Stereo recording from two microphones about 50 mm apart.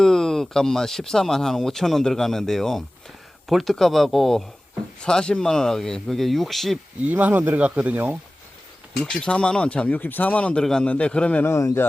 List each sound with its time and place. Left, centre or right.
0.0 s speech: centre
5.0 s speech: centre
7.1 s speech: right
9.0 s speech: left
10.6 s speech: centre
10.8 s speech: left
11.5 s speech: left